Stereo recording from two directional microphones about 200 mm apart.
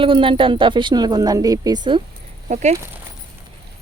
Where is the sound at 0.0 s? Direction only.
25° right (ahead or behind).